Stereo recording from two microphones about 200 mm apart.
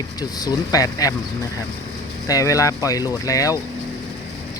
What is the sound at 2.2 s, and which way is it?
Speech, 15° left (ahead or behind).